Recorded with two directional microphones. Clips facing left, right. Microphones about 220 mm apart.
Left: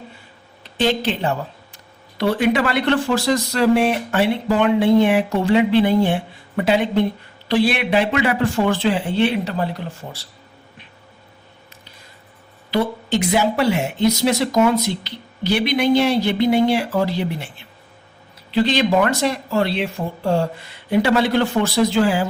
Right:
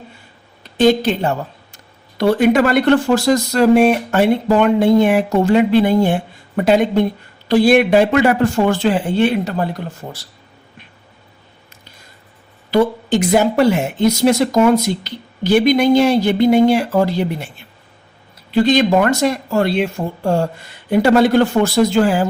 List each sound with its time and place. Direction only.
0.8 s speech: 45° right (ahead or behind)
12.7 s speech: 50° right (ahead or behind)
18.5 s speech: 45° right (ahead or behind)